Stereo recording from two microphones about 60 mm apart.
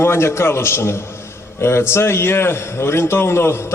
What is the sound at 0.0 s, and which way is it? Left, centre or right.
A man's voice, left.